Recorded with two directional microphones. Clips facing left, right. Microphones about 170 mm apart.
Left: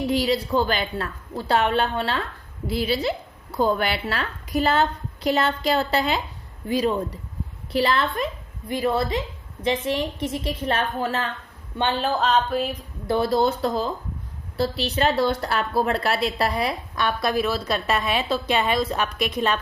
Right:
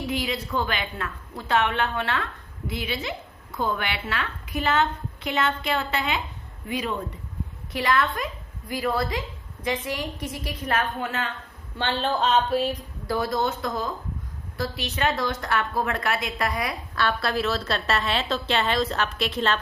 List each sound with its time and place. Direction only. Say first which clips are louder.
0.1 s a woman's voice: left 6 dB; 30° left (ahead or behind)
11.8 s a sound: left 2 dB; 10° left (ahead or behind)
13.1 s speech: left 5 dB; 30° left (ahead or behind)
16.9 s a woman's voice: even; 15° left (ahead or behind)